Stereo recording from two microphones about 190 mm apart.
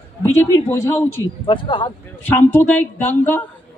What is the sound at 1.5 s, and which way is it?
Speech, 25° left (ahead or behind).